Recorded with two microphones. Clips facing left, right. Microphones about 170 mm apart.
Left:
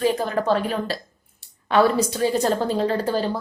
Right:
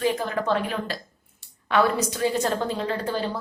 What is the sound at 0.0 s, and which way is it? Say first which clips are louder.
A woman's voice: left 3 dB; 35° left (ahead or behind).